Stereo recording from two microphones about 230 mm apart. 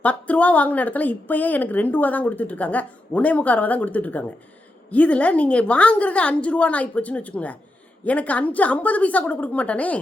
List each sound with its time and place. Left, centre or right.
0.0 s a woman's voice: centre